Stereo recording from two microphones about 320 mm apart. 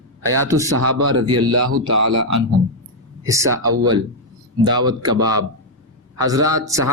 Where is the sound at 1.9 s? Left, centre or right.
Right.